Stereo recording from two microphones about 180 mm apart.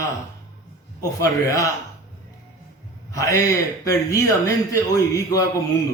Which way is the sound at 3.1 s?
15° left (ahead or behind).